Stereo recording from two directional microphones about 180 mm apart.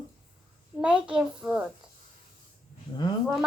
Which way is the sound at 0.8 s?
5° right (ahead or behind).